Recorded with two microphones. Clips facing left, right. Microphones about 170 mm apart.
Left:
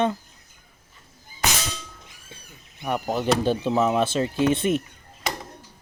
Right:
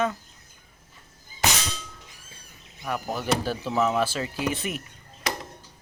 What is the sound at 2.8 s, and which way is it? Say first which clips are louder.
Speech: left 5 dB; 25° left (ahead or behind).